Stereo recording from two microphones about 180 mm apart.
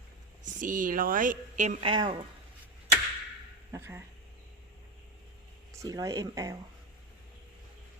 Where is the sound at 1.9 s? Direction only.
30° right (ahead or behind).